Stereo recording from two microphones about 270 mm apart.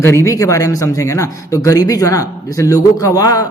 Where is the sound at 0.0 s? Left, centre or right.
Centre.